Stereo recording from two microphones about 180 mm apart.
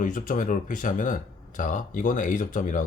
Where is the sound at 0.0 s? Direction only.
45° left (ahead or behind).